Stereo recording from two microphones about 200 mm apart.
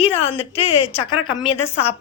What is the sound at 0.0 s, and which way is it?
Speech, 30° left (ahead or behind).